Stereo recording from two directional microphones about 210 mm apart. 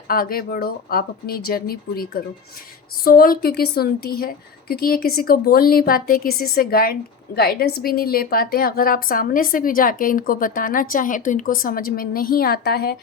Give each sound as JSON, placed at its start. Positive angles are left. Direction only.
{"t": 0.1, "sound": "a woman's voice", "side_deg": 45}